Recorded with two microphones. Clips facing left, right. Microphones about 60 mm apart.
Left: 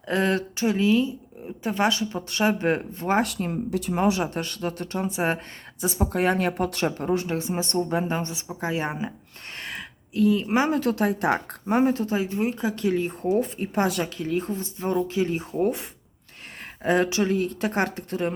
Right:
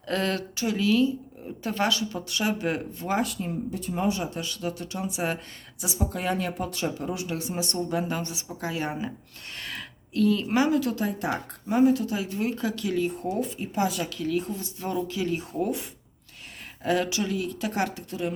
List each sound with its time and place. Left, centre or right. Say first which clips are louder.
0.0 s speech: left 4 dB; left
3.2 s speech: left 3 dB; left
7.0 s speech: left 6 dB; left
9.6 s a sound: left 2 dB; left
10.2 s speech: left 2 dB; centre
10.7 s speech: left 2 dB; left
13.6 s speech: left 3 dB; left
14.0 s speech: left 1 dB; left